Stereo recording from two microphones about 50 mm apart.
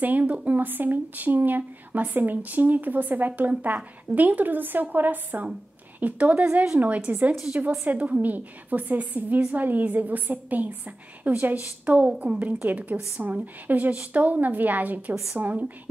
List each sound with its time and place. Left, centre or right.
0.0 s speech: right